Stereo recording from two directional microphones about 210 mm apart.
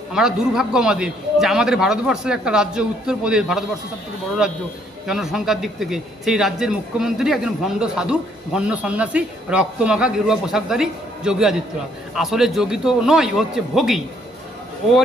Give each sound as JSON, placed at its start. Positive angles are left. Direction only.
{"t": 0.1, "sound": "a man's voice", "side_deg": 0}